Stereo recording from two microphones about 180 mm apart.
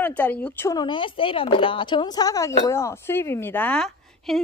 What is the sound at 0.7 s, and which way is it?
Speech, 25° left (ahead or behind).